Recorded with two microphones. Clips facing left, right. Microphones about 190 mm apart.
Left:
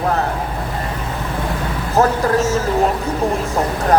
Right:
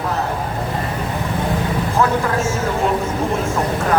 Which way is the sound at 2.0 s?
40° left (ahead or behind).